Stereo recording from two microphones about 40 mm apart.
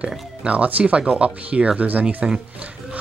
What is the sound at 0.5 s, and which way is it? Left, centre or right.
Speech, right.